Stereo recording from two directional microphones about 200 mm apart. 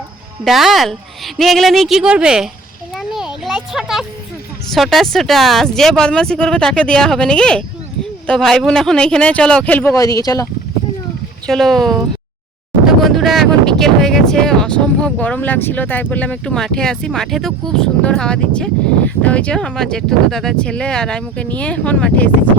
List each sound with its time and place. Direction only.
0.4 s speech: centre (ahead or behind)
2.9 s a sound: centre (ahead or behind)
4.7 s speech: centre (ahead or behind)
9.9 s speech: 15° left (ahead or behind)
11.4 s speech: centre (ahead or behind)